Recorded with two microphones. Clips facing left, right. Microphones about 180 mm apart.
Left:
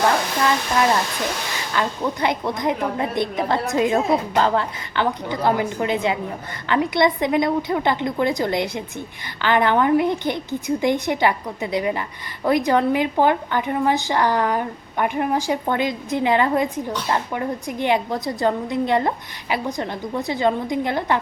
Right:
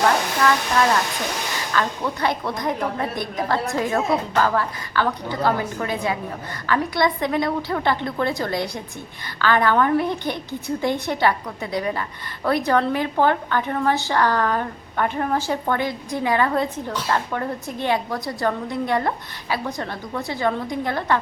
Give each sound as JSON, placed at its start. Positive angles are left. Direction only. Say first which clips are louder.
{"t": 1.7, "sound": "a woman's voice", "louder": "left 1 dB", "side_deg": 20}